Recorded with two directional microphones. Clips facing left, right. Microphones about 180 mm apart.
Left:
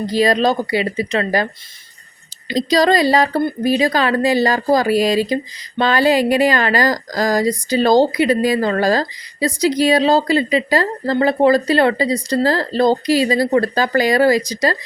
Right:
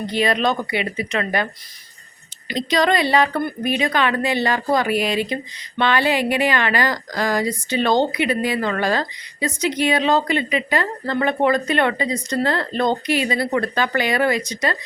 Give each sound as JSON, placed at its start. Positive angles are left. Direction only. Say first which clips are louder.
{"t": 0.0, "sound": "speech", "louder": "left 5 dB", "side_deg": 35}
{"t": 2.5, "sound": "speech", "louder": "left 4 dB", "side_deg": 35}